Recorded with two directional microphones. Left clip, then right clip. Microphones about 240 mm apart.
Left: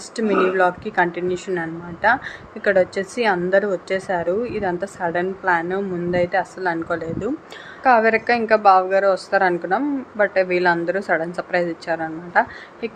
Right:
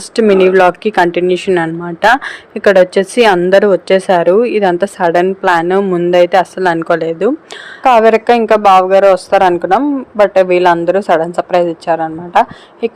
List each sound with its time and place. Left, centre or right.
0.2 s a woman's voice: right